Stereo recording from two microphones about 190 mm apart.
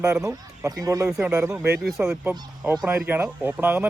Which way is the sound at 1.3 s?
15° right (ahead or behind).